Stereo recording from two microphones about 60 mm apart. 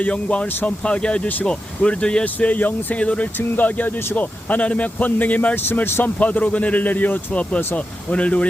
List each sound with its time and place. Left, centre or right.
0.0 s speech: centre
1.5 s speech: centre
2.2 s speech: left
5.5 s speech: left